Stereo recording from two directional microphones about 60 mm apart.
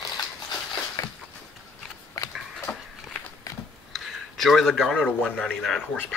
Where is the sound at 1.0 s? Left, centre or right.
Left.